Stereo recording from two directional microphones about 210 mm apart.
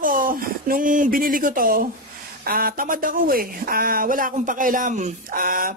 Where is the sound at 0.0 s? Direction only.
40° right (ahead or behind).